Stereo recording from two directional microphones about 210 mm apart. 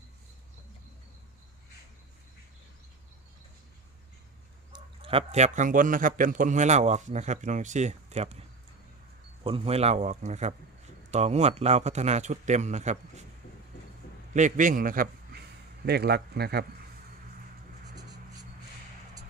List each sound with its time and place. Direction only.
4.7 s a man's voice: 25° right (ahead or behind)
9.4 s a man's voice: 25° right (ahead or behind)
14.3 s a man's voice: 35° right (ahead or behind)
17.9 s writing: 20° right (ahead or behind)